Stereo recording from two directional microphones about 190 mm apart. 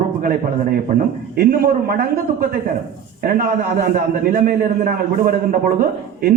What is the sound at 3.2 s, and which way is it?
A man's voice, 50° right (ahead or behind).